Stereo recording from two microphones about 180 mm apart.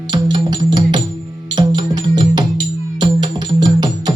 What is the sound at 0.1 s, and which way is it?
Music, 25° right (ahead or behind).